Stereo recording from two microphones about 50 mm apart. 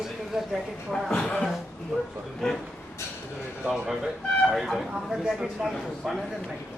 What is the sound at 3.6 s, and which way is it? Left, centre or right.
A man's voice, centre.